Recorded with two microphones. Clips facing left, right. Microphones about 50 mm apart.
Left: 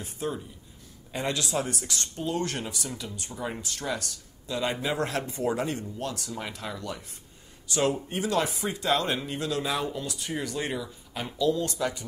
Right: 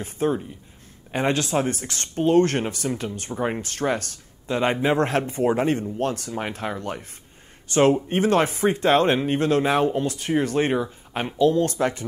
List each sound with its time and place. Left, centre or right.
0.0 s speech: right